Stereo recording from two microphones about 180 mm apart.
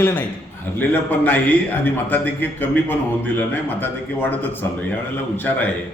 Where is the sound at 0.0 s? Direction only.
10° left (ahead or behind).